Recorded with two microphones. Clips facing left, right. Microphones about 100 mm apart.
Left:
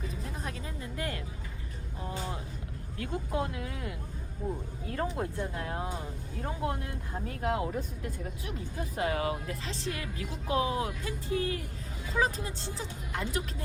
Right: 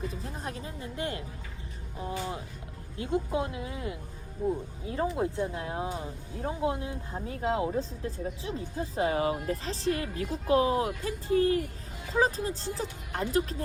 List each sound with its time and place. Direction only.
0.1 s speech: 35° right (ahead or behind)
3.0 s speech: 20° right (ahead or behind); by 13.6 s 35° right (ahead or behind)